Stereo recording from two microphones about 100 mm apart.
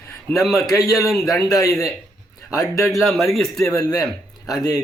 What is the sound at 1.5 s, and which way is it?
Speech, 35° left (ahead or behind).